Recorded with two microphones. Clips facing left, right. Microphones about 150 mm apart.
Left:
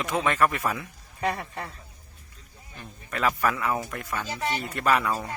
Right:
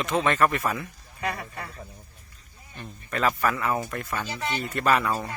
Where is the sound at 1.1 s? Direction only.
30° left (ahead or behind).